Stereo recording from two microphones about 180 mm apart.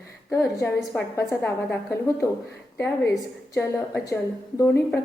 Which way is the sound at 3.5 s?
15° left (ahead or behind).